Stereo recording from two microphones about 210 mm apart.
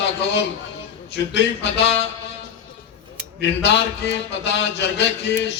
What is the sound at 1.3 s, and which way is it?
Speech, 55° left (ahead or behind).